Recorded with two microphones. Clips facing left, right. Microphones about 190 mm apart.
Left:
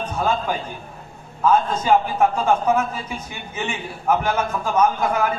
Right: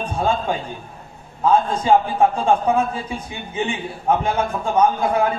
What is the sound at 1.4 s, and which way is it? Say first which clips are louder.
A man's voice: right 1 dB; 30° right (ahead or behind).